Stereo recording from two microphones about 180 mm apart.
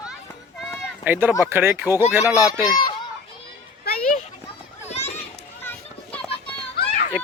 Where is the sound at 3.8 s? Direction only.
55° left (ahead or behind).